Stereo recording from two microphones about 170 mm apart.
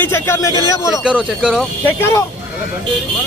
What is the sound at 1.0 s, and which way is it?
Speech, 5° right (ahead or behind).